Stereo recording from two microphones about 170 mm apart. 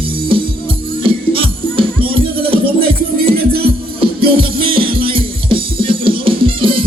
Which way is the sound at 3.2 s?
65° right (ahead or behind).